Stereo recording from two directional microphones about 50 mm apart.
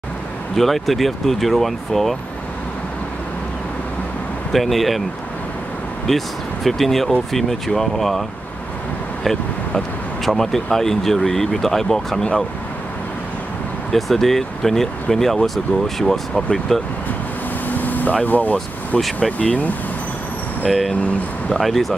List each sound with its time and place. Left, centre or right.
0.6 s speech: centre
4.5 s speech: centre
6.0 s speech: centre
10.2 s speech: centre
13.9 s speech: centre
17.6 s air conditioning: left
18.2 s speech: left
20.6 s speech: centre